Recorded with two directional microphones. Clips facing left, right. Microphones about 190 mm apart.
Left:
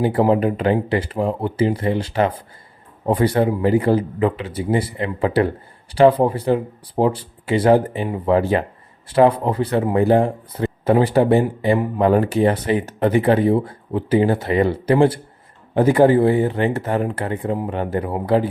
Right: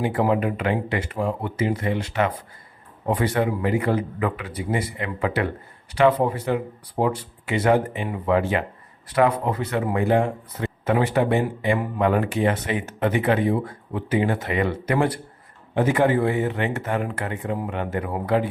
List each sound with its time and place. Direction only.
0.0 s speech: 35° left (ahead or behind)